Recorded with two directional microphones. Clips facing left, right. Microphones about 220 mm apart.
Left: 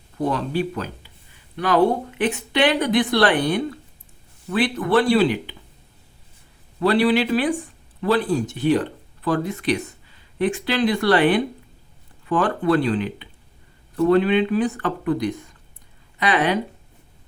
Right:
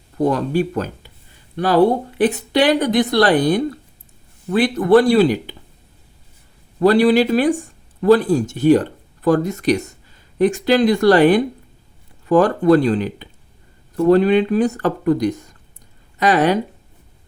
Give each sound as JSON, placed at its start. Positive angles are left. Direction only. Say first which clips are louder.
{"t": 0.3, "sound": "speech", "louder": "right 4 dB", "side_deg": -45}
{"t": 1.5, "sound": "speech", "louder": "right 4 dB", "side_deg": -35}
{"t": 6.7, "sound": "speech", "louder": "right 5 dB", "side_deg": -40}